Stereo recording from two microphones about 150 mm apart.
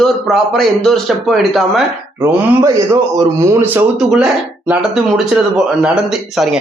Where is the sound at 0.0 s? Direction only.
5° left (ahead or behind).